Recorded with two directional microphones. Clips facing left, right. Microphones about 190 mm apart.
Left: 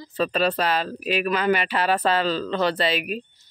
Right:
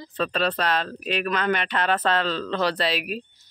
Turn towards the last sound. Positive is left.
turn(degrees=0)  # may be behind; listen again after turning